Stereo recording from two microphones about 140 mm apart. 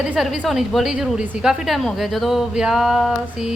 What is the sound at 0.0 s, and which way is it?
A woman's voice, 5° right (ahead or behind).